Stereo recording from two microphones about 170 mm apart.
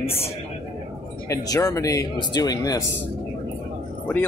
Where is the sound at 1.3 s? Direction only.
20° left (ahead or behind).